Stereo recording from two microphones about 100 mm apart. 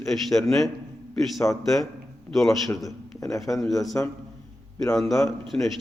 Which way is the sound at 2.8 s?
35° left (ahead or behind).